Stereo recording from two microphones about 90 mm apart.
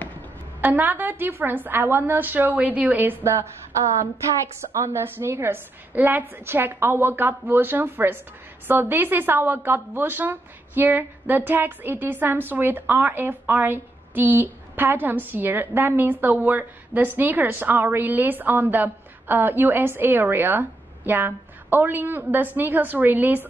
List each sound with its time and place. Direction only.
0.6 s a woman's voice: 20° right (ahead or behind)
4.7 s a woman's voice: 30° right (ahead or behind)